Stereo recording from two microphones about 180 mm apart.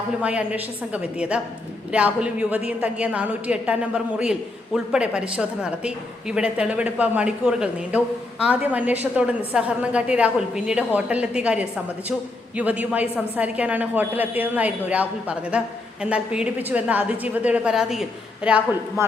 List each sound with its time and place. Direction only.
0.2 s a woman's voice: 5° right (ahead or behind)